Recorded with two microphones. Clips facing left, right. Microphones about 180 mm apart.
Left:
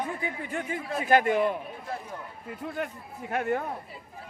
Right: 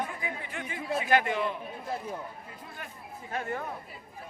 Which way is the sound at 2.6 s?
65° left (ahead or behind).